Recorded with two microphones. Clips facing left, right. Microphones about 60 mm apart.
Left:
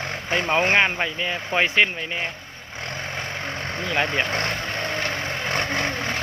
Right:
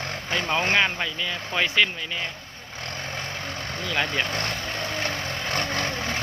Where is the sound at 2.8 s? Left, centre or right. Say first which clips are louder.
Left 3 dB; left.